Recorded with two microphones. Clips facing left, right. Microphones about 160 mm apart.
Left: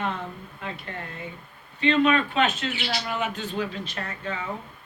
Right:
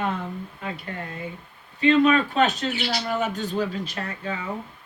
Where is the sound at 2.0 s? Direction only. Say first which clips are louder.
Right 2 dB; 40° right (ahead or behind).